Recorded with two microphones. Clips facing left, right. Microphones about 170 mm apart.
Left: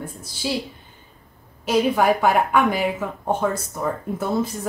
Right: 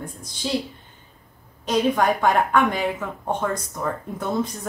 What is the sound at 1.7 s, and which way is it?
Speech, 10° left (ahead or behind).